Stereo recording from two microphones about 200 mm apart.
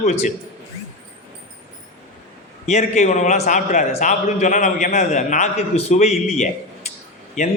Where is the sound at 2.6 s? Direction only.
35° left (ahead or behind).